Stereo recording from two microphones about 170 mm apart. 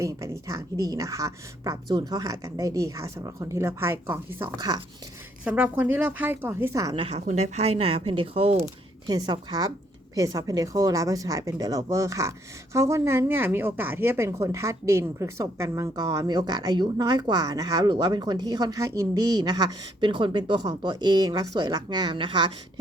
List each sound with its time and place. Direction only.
0.0 s a woman's voice: 20° right (ahead or behind)
6.9 s a woman's voice: 35° right (ahead or behind)